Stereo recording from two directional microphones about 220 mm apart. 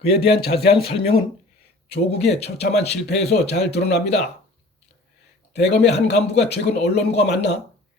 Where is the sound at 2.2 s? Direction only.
30° left (ahead or behind).